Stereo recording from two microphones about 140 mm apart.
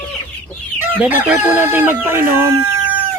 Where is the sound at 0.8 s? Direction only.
15° right (ahead or behind).